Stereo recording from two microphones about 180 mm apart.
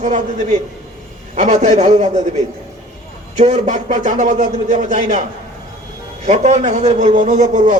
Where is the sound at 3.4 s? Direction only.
40° right (ahead or behind).